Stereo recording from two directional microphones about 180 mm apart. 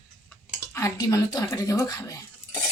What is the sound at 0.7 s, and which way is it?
Speech, 15° left (ahead or behind).